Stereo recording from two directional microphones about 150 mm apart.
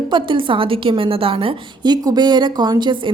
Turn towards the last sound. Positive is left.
turn(degrees=-30)  # may be behind; listen again after turning